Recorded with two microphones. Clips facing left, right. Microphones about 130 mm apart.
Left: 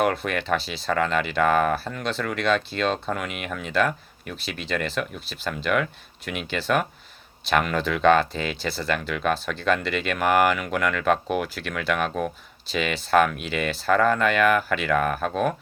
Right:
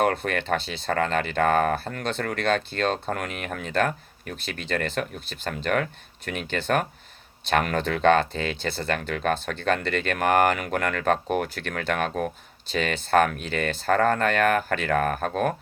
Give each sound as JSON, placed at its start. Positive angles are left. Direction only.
{"t": 0.0, "sound": "speech", "side_deg": -45}